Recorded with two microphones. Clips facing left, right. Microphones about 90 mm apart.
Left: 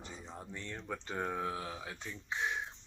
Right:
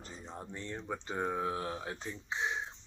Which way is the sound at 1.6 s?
40° right (ahead or behind).